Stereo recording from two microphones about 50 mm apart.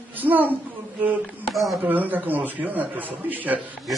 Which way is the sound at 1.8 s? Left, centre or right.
Right.